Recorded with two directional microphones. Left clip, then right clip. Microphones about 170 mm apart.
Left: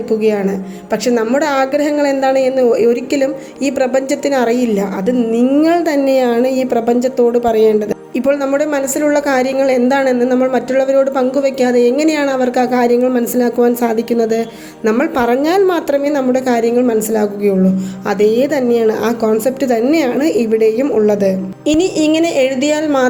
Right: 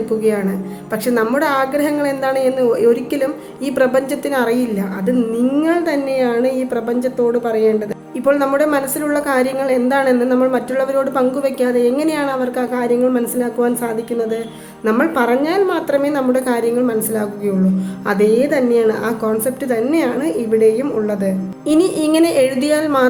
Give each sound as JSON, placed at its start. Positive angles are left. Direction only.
{"t": 1.0, "sound": "a woman's voice", "side_deg": 15}
{"t": 5.6, "sound": "a woman's voice", "side_deg": 35}
{"t": 16.0, "sound": "a woman's voice", "side_deg": 20}
{"t": 21.7, "sound": "a woman's voice", "side_deg": 10}